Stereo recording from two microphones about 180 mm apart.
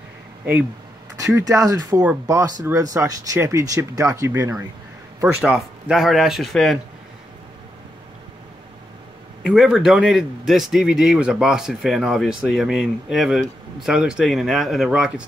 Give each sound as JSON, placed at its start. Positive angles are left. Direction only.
{"t": 1.1, "sound": "speech", "side_deg": -20}
{"t": 5.4, "sound": "speech", "side_deg": 0}
{"t": 9.4, "sound": "speech", "side_deg": -5}